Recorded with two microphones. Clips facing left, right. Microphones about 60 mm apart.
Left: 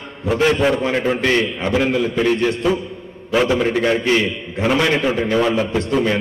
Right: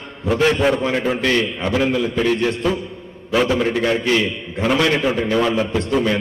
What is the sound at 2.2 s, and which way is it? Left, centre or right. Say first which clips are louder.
Speech: left 1 dB; left.